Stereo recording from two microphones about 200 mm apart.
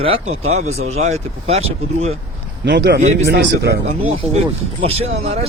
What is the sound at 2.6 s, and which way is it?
A man's voice, 60° right (ahead or behind).